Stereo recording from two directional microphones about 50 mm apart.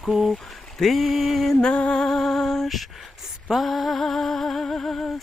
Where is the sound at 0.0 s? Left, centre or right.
Centre.